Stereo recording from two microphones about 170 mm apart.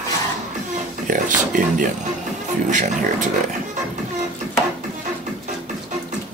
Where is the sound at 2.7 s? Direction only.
50° right (ahead or behind).